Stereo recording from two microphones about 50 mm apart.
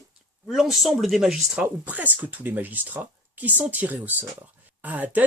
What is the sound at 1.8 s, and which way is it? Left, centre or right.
Speech, right.